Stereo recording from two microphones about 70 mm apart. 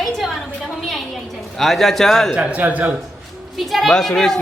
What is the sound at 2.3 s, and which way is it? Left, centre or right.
Speech, centre.